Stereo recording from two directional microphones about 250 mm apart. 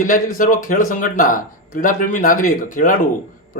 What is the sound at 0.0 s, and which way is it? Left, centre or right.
Speech, left.